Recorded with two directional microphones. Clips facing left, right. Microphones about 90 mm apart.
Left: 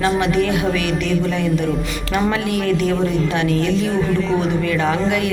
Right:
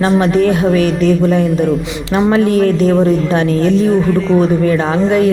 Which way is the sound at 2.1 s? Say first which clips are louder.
Right 7 dB; 25° right (ahead or behind).